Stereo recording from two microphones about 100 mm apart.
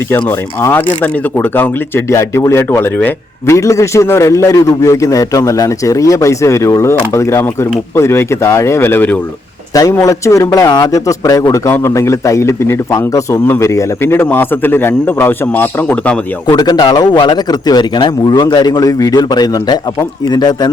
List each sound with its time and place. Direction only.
0.1 s a man's voice: 25° left (ahead or behind)
2.0 s a man's voice: 30° left (ahead or behind)
10.0 s a man's voice: 35° left (ahead or behind)
16.5 s a man's voice: 45° left (ahead or behind)